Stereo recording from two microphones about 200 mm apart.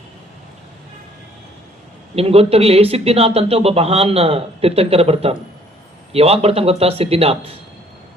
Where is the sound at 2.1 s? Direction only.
30° right (ahead or behind).